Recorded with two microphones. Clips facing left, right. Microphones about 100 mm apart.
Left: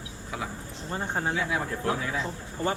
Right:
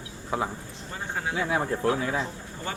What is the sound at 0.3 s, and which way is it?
Speech, 35° right (ahead or behind).